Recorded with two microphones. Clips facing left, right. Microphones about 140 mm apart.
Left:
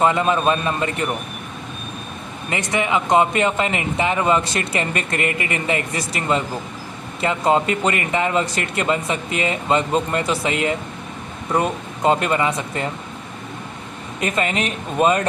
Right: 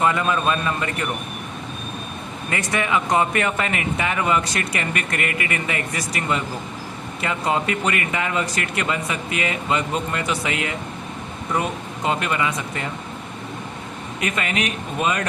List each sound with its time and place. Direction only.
0.0 s speech: 25° left (ahead or behind)
2.5 s speech: 20° left (ahead or behind)
12.0 s speech: 35° left (ahead or behind)
14.2 s speech: 30° left (ahead or behind)